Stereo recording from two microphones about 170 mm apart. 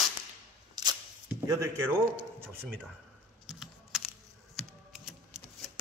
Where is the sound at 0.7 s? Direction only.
25° right (ahead or behind).